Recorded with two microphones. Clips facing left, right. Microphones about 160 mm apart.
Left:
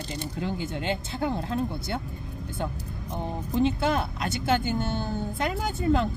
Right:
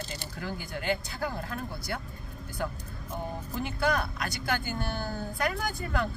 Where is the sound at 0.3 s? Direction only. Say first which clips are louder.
Left 5 dB; 25° left (ahead or behind).